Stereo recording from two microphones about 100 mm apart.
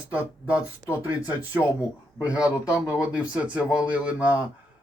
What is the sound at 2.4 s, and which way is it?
Speech, 35° left (ahead or behind).